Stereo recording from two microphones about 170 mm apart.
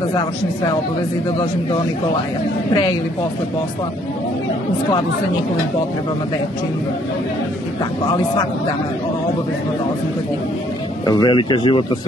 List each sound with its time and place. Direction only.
11.1 s speech: 25° left (ahead or behind)